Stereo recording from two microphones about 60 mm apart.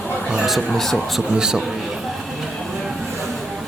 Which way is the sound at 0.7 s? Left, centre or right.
Centre.